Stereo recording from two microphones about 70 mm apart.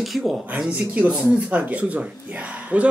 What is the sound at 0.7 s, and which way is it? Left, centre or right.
Speech, right.